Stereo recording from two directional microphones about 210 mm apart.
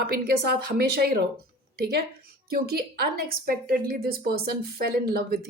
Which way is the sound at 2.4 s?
45° right (ahead or behind).